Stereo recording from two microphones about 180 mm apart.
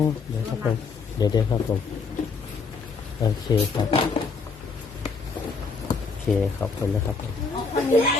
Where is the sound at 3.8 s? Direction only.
25° left (ahead or behind).